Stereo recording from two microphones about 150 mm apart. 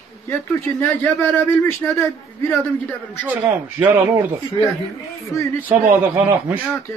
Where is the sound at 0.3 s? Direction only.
15° left (ahead or behind).